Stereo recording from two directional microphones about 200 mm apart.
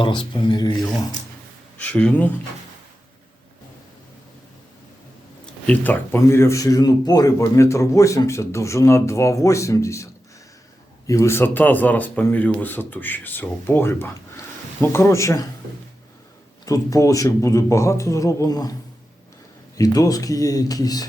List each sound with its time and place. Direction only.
0.0 s speech: 25° left (ahead or behind)
1.8 s speech: 5° left (ahead or behind)
5.6 s speech: 10° left (ahead or behind)
16.6 s speech: 15° left (ahead or behind)